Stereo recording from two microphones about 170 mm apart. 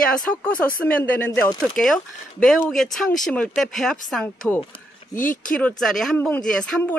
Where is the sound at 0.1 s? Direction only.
5° left (ahead or behind).